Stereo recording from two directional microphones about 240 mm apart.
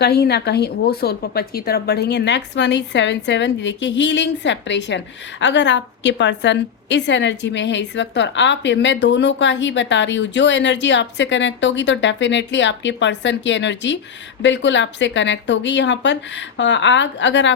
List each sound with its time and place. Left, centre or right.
0.0 s a woman's voice: left